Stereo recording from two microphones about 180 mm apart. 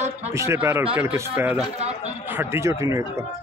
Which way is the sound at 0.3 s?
15° right (ahead or behind).